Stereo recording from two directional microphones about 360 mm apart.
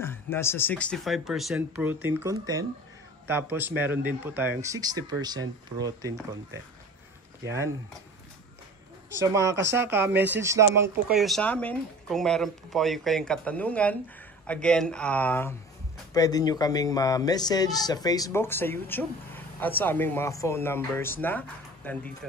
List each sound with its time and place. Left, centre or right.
0.0 s speech: centre
9.1 s speech: centre